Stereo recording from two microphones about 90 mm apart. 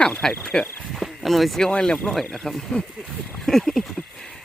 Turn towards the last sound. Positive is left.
turn(degrees=5)  # may be behind; listen again after turning